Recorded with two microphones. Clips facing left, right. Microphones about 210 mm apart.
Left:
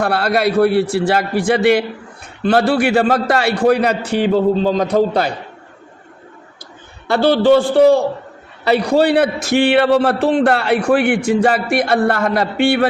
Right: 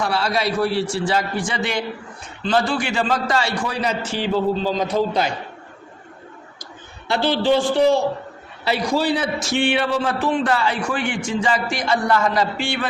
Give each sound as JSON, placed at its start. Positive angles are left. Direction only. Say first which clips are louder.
{"t": 0.0, "sound": "a man's voice", "louder": "left 6 dB", "side_deg": 60}
{"t": 7.1, "sound": "a man's voice", "louder": "left 7 dB", "side_deg": 50}